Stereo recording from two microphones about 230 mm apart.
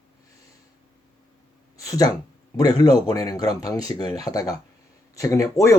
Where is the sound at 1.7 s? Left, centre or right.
Centre.